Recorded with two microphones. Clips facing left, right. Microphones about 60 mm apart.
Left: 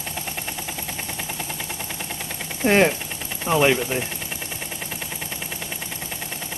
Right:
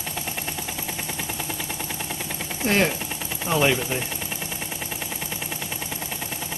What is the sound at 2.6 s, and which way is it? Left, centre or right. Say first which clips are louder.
Speech: left 4 dB; centre.